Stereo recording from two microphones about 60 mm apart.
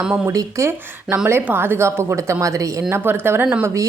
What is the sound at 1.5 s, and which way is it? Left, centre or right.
A woman's voice, right.